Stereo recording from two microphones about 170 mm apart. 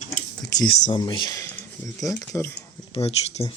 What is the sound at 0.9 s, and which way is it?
Speech, 25° left (ahead or behind).